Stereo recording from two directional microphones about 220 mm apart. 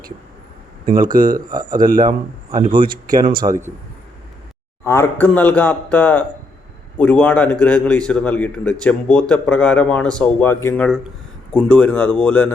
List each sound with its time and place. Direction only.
0.9 s speech: 40° right (ahead or behind)
3.4 s a man's voice: 15° right (ahead or behind)
4.9 s a man's voice: 10° left (ahead or behind)